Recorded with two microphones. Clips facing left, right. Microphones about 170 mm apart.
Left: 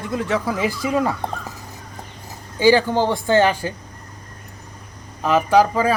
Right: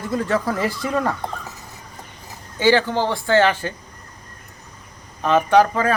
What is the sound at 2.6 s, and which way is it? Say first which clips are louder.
Speech: left 2 dB; 15° left (ahead or behind).